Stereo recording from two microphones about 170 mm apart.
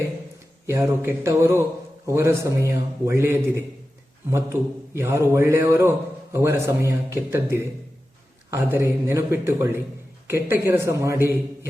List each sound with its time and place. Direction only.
0.7 s a man's voice: 15° right (ahead or behind)